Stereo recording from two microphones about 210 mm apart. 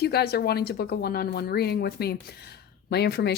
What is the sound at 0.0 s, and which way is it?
Speech, 50° left (ahead or behind).